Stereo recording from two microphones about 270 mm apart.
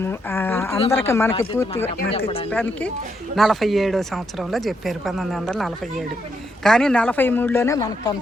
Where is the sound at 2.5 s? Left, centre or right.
Centre.